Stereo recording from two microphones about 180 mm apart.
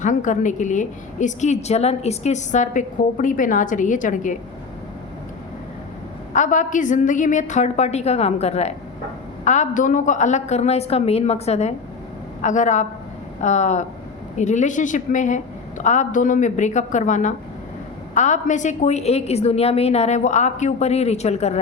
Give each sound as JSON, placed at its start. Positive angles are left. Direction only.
{"t": 0.0, "sound": "a woman's voice", "side_deg": 45}
{"t": 6.3, "sound": "a woman's voice", "side_deg": 45}